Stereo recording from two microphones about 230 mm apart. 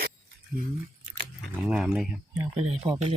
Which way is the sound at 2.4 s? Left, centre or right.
Right.